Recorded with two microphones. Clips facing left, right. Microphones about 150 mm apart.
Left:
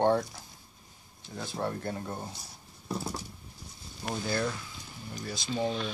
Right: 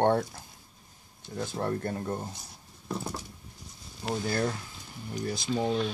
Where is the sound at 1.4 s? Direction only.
45° right (ahead or behind).